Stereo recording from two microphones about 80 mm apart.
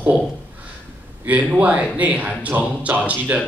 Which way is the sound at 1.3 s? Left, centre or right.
Centre.